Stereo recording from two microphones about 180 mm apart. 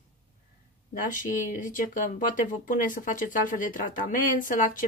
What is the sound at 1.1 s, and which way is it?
Speech, 45° left (ahead or behind).